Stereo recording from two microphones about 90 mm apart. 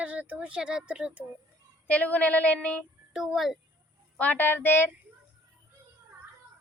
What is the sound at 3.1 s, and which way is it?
Speech, 5° right (ahead or behind).